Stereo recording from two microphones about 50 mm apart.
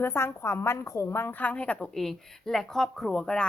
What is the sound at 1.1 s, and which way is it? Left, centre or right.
Speech, left.